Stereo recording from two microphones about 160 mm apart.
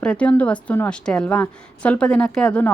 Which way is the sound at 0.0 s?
5° left (ahead or behind).